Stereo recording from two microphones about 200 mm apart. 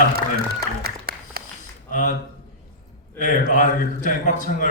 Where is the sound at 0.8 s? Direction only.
50° right (ahead or behind).